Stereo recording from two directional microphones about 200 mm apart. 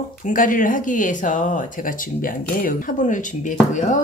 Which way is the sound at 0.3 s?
40° left (ahead or behind).